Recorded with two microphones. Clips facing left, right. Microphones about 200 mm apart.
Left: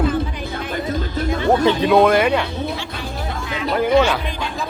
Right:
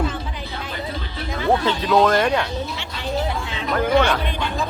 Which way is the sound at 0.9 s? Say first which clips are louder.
Left 8 dB; 45° left (ahead or behind).